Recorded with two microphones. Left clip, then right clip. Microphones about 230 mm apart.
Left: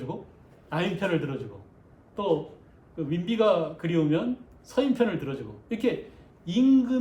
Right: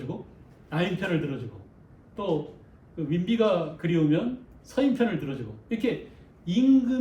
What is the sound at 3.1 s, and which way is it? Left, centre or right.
Speech, centre.